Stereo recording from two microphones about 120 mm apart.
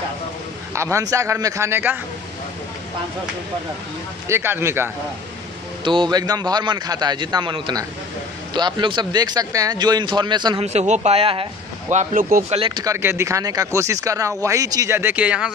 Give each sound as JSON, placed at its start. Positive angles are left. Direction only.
{"t": 0.7, "sound": "a man's voice", "side_deg": -25}
{"t": 4.3, "sound": "a man's voice", "side_deg": -20}
{"t": 5.9, "sound": "a man's voice", "side_deg": -40}
{"t": 10.6, "sound": "speech", "side_deg": -65}
{"t": 11.9, "sound": "speech", "side_deg": -80}
{"t": 12.5, "sound": "speech", "side_deg": -45}
{"t": 12.8, "sound": "a man's voice", "side_deg": -20}
{"t": 15.0, "sound": "speech", "side_deg": -15}